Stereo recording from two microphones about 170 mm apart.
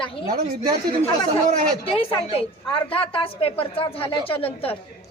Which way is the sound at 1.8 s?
35° left (ahead or behind).